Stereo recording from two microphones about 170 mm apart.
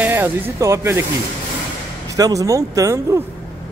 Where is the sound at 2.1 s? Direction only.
20° right (ahead or behind).